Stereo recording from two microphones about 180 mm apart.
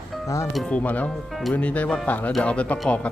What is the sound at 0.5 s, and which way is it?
Speech, 5° left (ahead or behind).